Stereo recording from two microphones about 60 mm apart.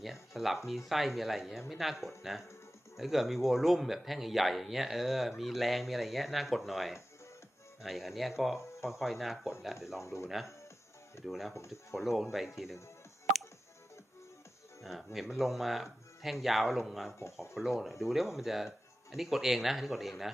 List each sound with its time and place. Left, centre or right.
0.0 s a sound: centre
0.9 s speech: centre
8.5 s speech: left
8.9 s speech: centre
10.0 s speech: left
10.2 s speech: centre
14.8 s speech: centre